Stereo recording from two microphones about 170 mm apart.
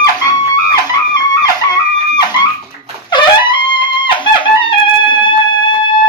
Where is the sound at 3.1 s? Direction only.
25° left (ahead or behind).